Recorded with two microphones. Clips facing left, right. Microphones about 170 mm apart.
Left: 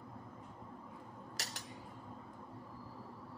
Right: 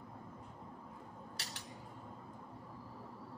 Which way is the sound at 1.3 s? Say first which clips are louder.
Left 4 dB; 40° left (ahead or behind).